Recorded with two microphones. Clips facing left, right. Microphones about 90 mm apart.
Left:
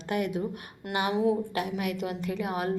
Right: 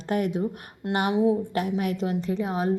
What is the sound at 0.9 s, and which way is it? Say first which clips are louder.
Speech: right 4 dB; 25° right (ahead or behind).